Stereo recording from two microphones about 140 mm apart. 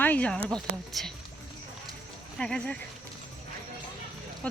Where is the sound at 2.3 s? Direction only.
5° left (ahead or behind).